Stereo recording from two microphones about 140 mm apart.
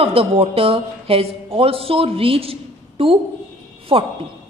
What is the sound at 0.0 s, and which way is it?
A woman's voice, 40° right (ahead or behind).